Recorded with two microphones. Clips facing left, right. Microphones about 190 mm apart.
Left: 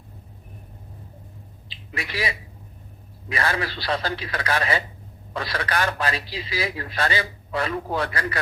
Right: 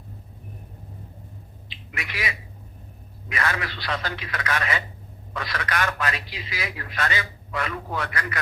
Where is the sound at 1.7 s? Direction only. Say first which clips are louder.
Left 4 dB; 35° left (ahead or behind).